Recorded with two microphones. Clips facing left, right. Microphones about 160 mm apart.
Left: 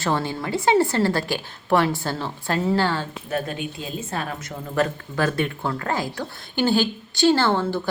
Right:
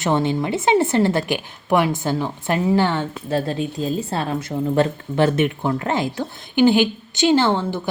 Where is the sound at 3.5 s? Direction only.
35° right (ahead or behind).